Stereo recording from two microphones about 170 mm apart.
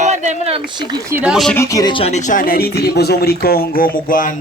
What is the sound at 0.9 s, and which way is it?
Speech, 20° right (ahead or behind).